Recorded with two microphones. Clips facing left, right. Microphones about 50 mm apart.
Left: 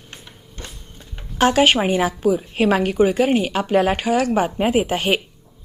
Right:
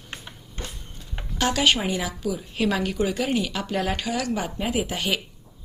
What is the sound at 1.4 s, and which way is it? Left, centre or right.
A woman's voice, left.